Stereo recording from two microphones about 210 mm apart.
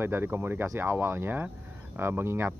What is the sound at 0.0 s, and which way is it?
Speech, 10° right (ahead or behind).